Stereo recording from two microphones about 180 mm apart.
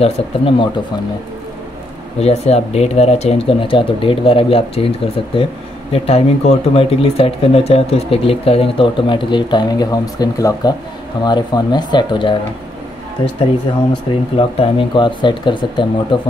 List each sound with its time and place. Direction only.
0.0 s speech: 30° left (ahead or behind)
2.1 s speech: 35° left (ahead or behind)
14.3 s speech: 30° left (ahead or behind)